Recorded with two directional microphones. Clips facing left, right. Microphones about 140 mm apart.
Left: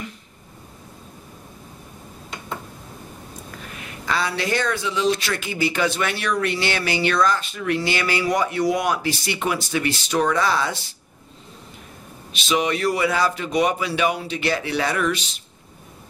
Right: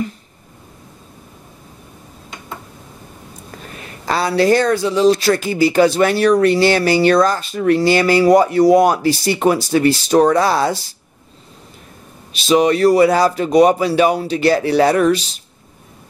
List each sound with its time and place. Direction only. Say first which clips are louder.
3.5 s speech: right 5 dB; 35° right (ahead or behind)
12.4 s speech: right 9 dB; 35° right (ahead or behind)